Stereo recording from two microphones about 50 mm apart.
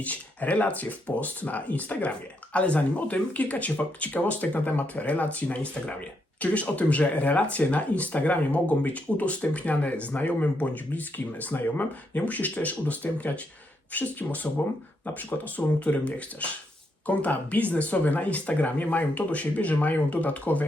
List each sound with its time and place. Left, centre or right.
0.0 s speech: left